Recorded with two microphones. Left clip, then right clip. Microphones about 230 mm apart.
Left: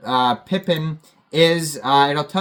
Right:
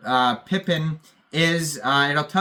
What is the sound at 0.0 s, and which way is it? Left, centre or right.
Speech, centre.